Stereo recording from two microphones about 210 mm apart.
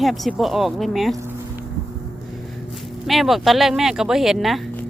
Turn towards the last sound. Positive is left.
turn(degrees=0)  # may be behind; listen again after turning